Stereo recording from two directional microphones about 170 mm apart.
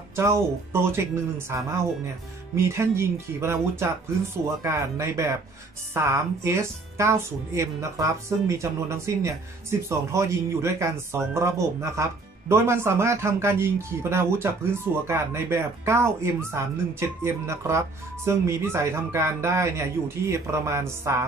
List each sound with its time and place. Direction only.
0.1 s speech: 15° right (ahead or behind)
1.5 s speech: 15° right (ahead or behind)